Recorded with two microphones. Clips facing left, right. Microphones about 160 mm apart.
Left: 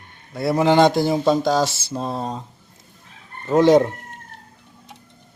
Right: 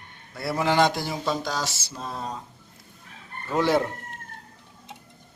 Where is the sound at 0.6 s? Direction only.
25° left (ahead or behind).